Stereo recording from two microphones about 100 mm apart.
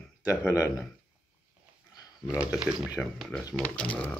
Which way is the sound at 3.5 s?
10° left (ahead or behind).